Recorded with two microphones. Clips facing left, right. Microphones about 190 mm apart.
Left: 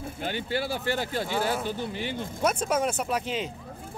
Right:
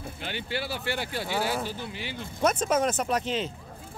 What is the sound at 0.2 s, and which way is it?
Speech, 45° left (ahead or behind).